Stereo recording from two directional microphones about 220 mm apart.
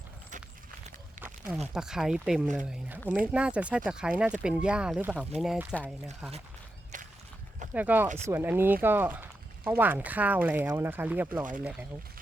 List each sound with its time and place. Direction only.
1.2 s speech: 5° right (ahead or behind)
6.9 s a sound: 35° right (ahead or behind)
7.7 s speech: 5° right (ahead or behind)